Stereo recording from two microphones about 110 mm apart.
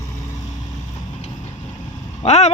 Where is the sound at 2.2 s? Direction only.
90° left.